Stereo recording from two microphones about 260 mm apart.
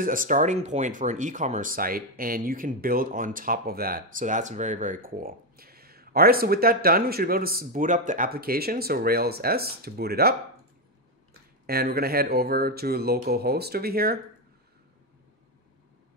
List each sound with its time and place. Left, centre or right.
0.0 s speech: right
11.6 s speech: right